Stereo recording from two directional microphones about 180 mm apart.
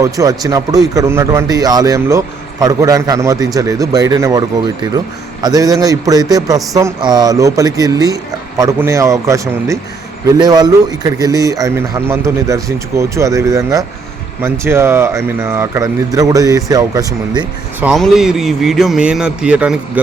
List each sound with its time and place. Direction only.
0.0 s speech: 20° right (ahead or behind)
17.8 s a man's voice: centre (ahead or behind)